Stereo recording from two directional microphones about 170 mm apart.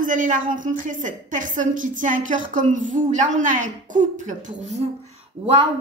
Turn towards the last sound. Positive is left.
turn(degrees=-35)  # may be behind; listen again after turning